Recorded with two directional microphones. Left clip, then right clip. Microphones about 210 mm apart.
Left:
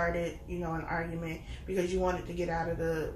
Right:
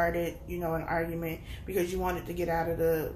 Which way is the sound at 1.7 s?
50° right (ahead or behind).